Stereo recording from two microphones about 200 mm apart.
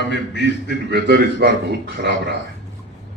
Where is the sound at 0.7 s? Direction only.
55° right (ahead or behind).